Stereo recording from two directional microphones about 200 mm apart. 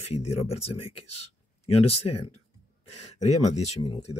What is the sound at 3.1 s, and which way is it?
Speech, 35° left (ahead or behind).